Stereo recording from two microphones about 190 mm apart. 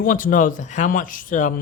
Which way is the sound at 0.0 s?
45° left (ahead or behind).